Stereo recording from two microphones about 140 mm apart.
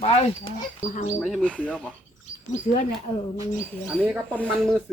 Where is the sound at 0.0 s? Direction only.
45° left (ahead or behind).